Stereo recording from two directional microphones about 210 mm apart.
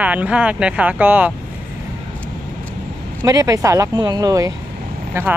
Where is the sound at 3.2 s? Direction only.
15° right (ahead or behind).